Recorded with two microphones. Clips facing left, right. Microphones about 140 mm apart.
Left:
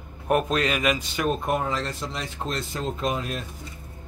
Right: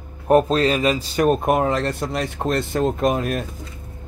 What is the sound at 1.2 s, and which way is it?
Speech, 60° right (ahead or behind).